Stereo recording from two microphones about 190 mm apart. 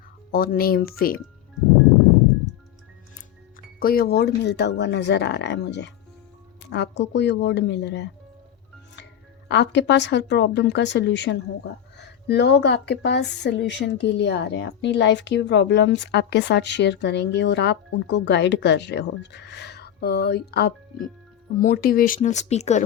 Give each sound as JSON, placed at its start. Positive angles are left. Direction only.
{"t": 0.3, "sound": "speech", "side_deg": 50}
{"t": 3.8, "sound": "speech", "side_deg": 50}
{"t": 9.5, "sound": "speech", "side_deg": 65}